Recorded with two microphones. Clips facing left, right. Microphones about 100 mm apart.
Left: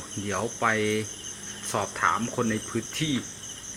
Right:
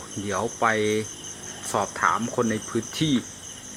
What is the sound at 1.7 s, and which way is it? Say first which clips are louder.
Speech: right 3 dB; 5° right (ahead or behind).